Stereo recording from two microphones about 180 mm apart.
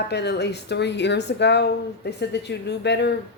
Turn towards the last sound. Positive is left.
turn(degrees=70)  # may be behind; listen again after turning